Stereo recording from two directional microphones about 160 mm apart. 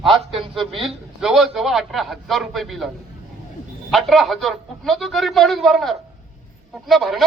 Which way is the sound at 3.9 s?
Centre (ahead or behind).